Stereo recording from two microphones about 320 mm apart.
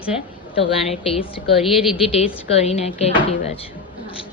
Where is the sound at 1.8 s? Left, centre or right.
Centre.